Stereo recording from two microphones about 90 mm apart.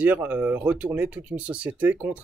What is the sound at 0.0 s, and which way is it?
Speech, 15° right (ahead or behind).